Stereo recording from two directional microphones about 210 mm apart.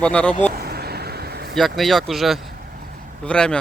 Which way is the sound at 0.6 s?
45° right (ahead or behind).